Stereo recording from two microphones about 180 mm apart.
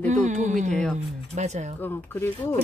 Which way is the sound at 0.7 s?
5° left (ahead or behind).